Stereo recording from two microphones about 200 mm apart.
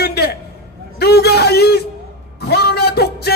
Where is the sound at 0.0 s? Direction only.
55° left (ahead or behind).